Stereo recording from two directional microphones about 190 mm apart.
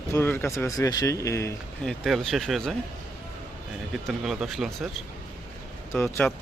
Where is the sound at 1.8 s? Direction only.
Centre (ahead or behind).